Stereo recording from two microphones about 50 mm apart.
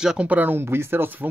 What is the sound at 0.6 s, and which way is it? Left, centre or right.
Speech, right.